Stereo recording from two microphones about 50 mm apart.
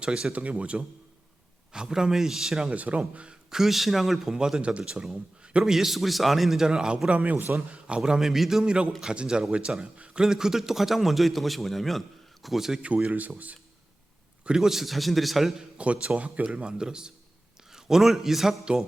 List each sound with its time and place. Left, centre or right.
0.0 s a man's voice: centre
0.3 s speech: right
1.7 s a man's voice: centre
2.7 s speech: right
3.0 s speech: centre
3.6 s a man's voice: centre
6.7 s speech: centre; by 7.5 s right
7.7 s a man's voice: centre
12.8 s speech: right
14.4 s a man's voice: centre
15.8 s a man's voice: right; by 18.6 s centre